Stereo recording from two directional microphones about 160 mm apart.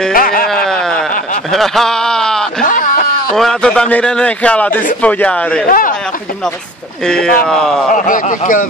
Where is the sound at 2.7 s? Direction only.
55° left (ahead or behind).